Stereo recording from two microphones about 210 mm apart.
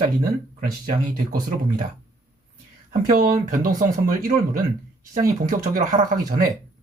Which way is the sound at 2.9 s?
40° right (ahead or behind).